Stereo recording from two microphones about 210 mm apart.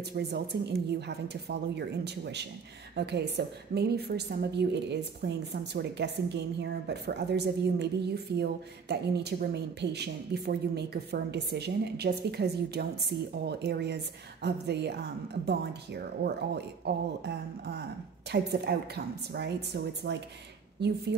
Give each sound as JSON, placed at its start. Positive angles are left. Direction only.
{"t": 0.1, "sound": "a woman's voice", "side_deg": -50}